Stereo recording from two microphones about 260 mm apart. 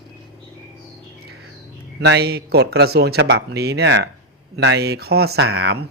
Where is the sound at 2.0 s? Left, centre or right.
Right.